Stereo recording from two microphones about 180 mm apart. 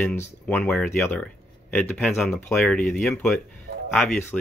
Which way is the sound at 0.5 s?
5° left (ahead or behind).